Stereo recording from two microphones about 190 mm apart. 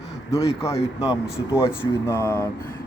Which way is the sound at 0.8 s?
35° left (ahead or behind).